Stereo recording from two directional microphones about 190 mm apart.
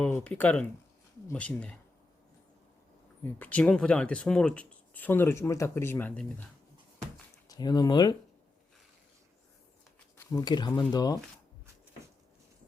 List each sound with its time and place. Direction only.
0.0 s speech: 5° left (ahead or behind)
3.3 s speech: 10° left (ahead or behind)
7.4 s speech: 20° left (ahead or behind)
10.2 s speech: 20° left (ahead or behind)